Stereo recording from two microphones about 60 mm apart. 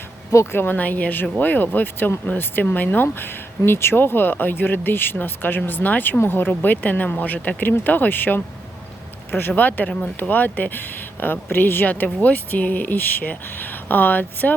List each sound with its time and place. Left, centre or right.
0.5 s speech: left